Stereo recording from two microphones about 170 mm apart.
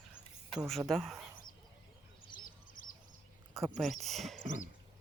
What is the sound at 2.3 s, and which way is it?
Bird, 55° left (ahead or behind).